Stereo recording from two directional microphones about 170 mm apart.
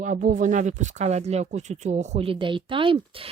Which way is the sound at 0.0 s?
50° right (ahead or behind).